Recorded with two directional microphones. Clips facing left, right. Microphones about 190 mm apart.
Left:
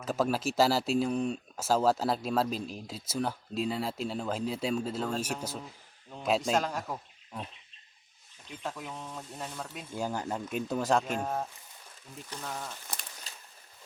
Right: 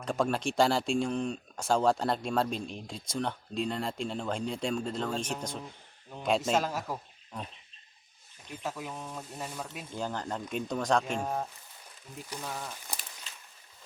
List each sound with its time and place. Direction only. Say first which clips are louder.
0.0 s speech: even; 5° left (ahead or behind)
8.4 s speech: right 1 dB; 5° right (ahead or behind)
9.9 s speech: left 2 dB; 10° left (ahead or behind)
12.3 s speech: even; 10° right (ahead or behind)
13.3 s a sound: left 1 dB; 40° left (ahead or behind)